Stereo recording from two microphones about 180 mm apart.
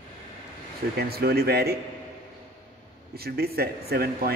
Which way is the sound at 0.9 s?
60° right (ahead or behind).